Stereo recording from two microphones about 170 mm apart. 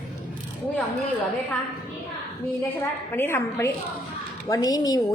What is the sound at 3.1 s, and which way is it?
A woman's voice, 15° left (ahead or behind).